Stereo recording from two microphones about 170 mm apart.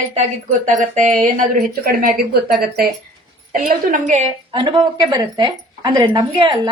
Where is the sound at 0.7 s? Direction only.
50° right (ahead or behind).